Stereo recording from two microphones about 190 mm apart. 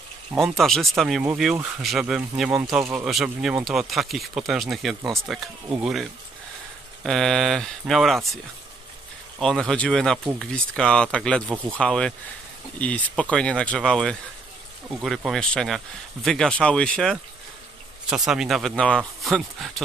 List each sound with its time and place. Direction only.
0.3 s speech: centre (ahead or behind)
9.4 s speech: 5° left (ahead or behind)